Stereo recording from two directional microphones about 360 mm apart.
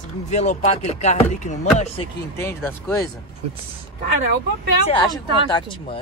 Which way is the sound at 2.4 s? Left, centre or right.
Centre.